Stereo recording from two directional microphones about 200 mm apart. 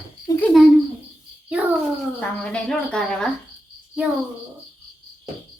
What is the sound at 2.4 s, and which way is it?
Speech, 5° left (ahead or behind).